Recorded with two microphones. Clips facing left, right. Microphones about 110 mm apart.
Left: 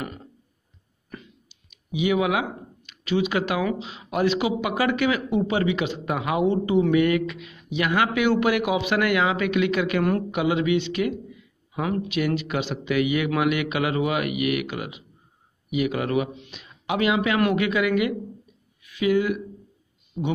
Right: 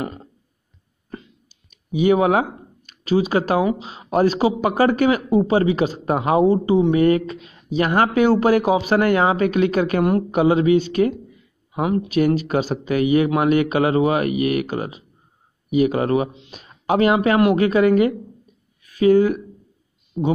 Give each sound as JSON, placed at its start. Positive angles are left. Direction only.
{"t": 0.0, "sound": "a sound", "side_deg": -25}
{"t": 1.9, "sound": "speech", "side_deg": -40}
{"t": 11.7, "sound": "speech", "side_deg": -25}
{"t": 12.1, "sound": "speech", "side_deg": -40}
{"t": 20.2, "sound": "speech", "side_deg": -10}